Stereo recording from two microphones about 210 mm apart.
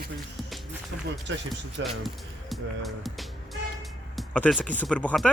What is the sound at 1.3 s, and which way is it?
Speech, 60° right (ahead or behind).